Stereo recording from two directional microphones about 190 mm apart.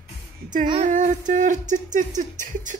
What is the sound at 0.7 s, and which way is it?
Speech, 40° right (ahead or behind).